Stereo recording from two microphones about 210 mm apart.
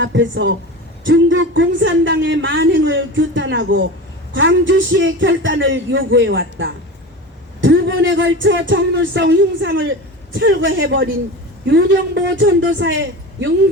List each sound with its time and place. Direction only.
0.0 s speech: 60° right (ahead or behind)